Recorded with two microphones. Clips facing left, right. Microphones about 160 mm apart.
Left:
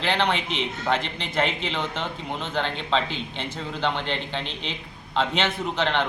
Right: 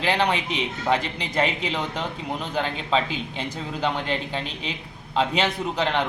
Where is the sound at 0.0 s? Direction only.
10° right (ahead or behind).